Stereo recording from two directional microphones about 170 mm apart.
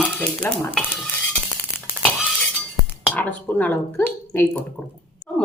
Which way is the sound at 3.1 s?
10° left (ahead or behind).